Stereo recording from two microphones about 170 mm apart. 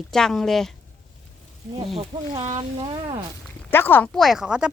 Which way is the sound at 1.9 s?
40° right (ahead or behind).